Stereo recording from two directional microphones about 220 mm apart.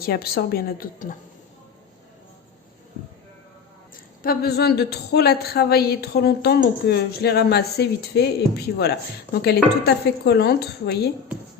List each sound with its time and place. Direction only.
0.0 s a woman's voice: 45° left (ahead or behind)
4.2 s a woman's voice: 45° left (ahead or behind)